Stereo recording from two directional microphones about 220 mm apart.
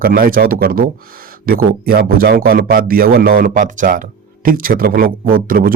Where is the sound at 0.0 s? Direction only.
40° right (ahead or behind).